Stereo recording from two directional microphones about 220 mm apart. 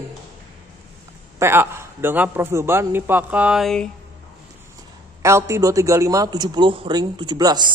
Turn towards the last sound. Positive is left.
turn(degrees=-20)  # may be behind; listen again after turning